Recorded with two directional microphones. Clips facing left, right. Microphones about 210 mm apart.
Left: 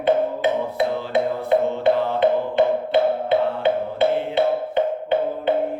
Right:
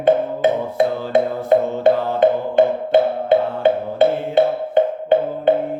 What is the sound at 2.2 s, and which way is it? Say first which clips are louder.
Music: right 3 dB; 45° right (ahead or behind).